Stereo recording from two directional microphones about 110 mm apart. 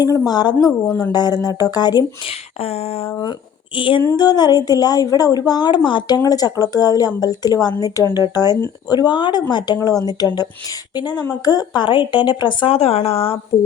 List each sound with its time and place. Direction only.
0.0 s a woman's voice: 35° left (ahead or behind)
2.2 s a sound: 70° left (ahead or behind)
3.8 s a woman's voice: 50° left (ahead or behind)
4.2 s a woman's voice: 40° left (ahead or behind); by 13.4 s 60° left (ahead or behind)